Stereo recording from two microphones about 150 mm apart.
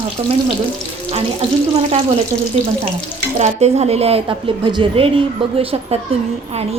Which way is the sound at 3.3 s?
45° right (ahead or behind).